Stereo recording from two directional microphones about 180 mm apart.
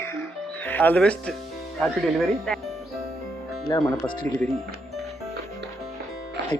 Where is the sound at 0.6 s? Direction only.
10° left (ahead or behind).